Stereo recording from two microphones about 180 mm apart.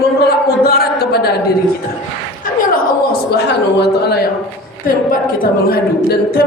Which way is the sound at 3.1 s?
65° left (ahead or behind).